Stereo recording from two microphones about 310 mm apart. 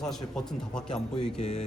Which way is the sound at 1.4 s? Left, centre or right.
Left.